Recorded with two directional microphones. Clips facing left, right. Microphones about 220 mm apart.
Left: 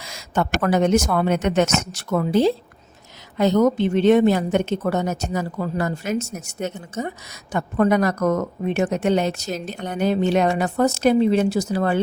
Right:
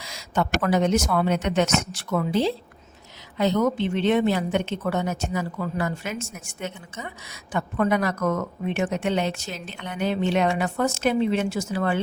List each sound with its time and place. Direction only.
0.0 s a woman's voice: 50° left (ahead or behind)